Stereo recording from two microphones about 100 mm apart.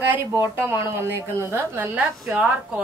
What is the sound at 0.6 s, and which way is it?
A woman's voice, 25° right (ahead or behind).